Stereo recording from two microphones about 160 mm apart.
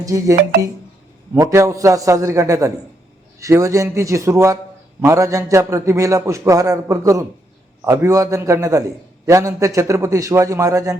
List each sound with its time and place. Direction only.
0.0 s a man's voice: 20° right (ahead or behind)